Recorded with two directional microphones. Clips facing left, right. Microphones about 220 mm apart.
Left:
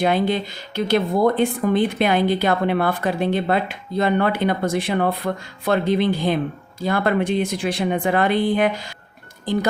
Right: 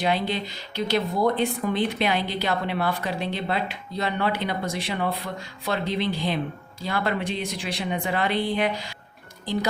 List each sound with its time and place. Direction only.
0.0 s speech: 50° left (ahead or behind)